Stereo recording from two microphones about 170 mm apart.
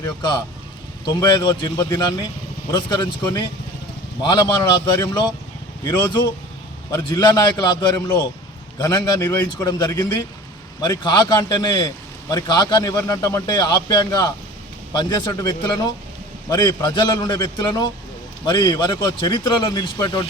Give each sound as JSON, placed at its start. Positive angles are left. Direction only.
{"t": 0.0, "sound": "a man's voice", "side_deg": 25}
{"t": 4.2, "sound": "a man's voice", "side_deg": 25}